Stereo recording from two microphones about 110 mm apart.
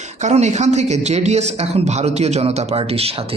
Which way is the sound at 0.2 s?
90° right.